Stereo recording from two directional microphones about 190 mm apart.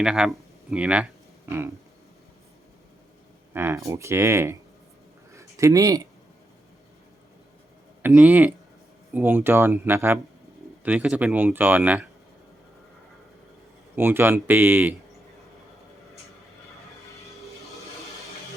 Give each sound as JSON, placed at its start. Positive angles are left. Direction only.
{"t": 0.0, "sound": "speech", "side_deg": -5}
{"t": 3.5, "sound": "a man's voice", "side_deg": -10}
{"t": 5.5, "sound": "speech", "side_deg": -15}
{"t": 8.0, "sound": "a man's voice", "side_deg": -10}
{"t": 13.9, "sound": "a man's voice", "side_deg": -10}